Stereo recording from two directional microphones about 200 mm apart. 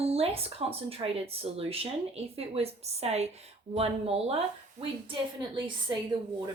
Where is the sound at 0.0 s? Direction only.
30° right (ahead or behind).